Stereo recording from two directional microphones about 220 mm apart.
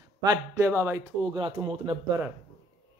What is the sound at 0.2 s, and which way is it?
A man's voice, 15° right (ahead or behind).